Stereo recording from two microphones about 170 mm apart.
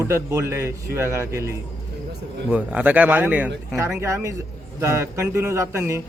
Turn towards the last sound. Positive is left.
turn(degrees=-15)  # may be behind; listen again after turning